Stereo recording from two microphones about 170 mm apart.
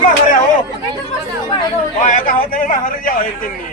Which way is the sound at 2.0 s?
55° left (ahead or behind).